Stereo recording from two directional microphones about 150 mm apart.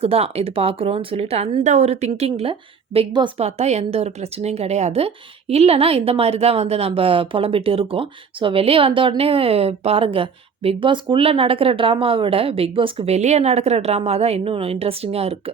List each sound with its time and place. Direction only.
0.0 s a woman's voice: 40° right (ahead or behind)
3.1 s a woman's voice: 30° right (ahead or behind)
3.3 s speech: 45° right (ahead or behind)